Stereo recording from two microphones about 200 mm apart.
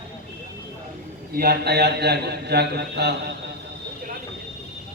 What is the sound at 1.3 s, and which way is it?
A man's voice, 50° right (ahead or behind).